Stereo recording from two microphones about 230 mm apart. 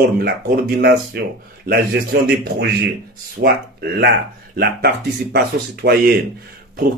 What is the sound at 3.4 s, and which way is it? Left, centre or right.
Speech, right.